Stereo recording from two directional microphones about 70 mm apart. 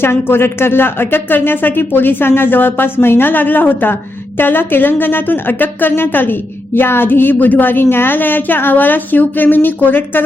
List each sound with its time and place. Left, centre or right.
0.0 s a woman's voice: left